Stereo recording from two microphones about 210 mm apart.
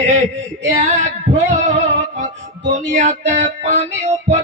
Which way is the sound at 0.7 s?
35° right (ahead or behind).